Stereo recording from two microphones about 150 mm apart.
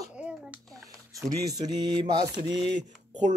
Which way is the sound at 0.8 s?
25° right (ahead or behind).